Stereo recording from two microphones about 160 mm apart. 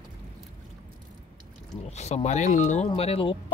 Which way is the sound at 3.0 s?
35° left (ahead or behind).